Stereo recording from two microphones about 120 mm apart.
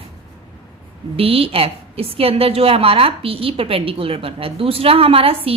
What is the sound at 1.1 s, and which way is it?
A woman's voice, 55° right (ahead or behind).